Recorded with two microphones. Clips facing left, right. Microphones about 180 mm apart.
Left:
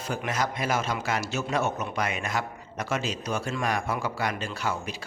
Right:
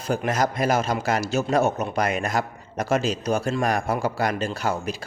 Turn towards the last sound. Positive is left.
turn(degrees=-40)  # may be behind; listen again after turning